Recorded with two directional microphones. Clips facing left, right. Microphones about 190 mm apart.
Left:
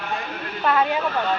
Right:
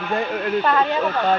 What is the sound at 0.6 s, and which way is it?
Speech, 5° left (ahead or behind).